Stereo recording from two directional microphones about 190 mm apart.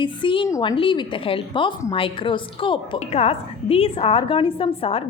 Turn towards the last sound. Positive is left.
turn(degrees=30)  # may be behind; listen again after turning